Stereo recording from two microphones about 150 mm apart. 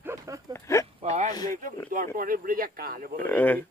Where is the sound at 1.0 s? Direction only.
50° right (ahead or behind).